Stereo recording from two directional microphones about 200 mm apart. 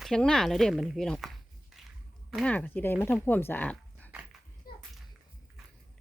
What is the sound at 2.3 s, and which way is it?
Speech, 5° left (ahead or behind).